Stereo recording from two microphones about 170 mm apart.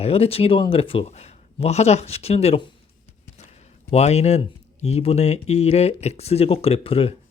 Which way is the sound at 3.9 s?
40° left (ahead or behind).